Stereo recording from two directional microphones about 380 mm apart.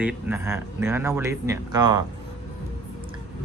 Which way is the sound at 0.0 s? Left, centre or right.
Centre.